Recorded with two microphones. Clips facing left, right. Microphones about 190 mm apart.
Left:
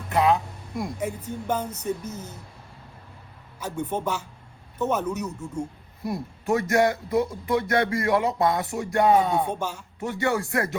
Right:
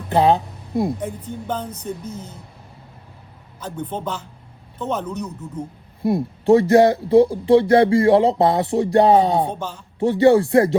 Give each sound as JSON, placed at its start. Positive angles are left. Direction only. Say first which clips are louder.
{"t": 0.1, "sound": "a sound", "louder": "right 5 dB", "side_deg": -30}
{"t": 1.5, "sound": "speech", "louder": "left 1 dB", "side_deg": 10}
{"t": 3.8, "sound": "speech", "louder": "even", "side_deg": 10}
{"t": 6.4, "sound": "speech", "louder": "right 9 dB", "side_deg": -30}
{"t": 9.5, "sound": "speech", "louder": "right 1 dB", "side_deg": 10}
{"t": 10.0, "sound": "speech", "louder": "right 12 dB", "side_deg": -30}